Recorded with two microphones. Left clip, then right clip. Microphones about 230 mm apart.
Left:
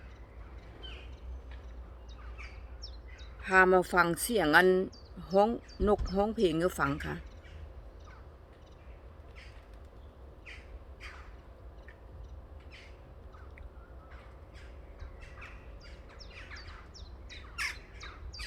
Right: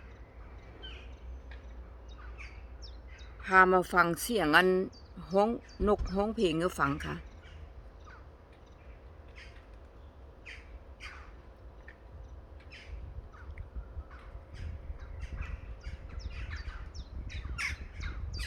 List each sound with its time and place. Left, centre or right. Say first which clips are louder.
3.4 s speech: right 1 dB; centre
16.9 s bird: even; centre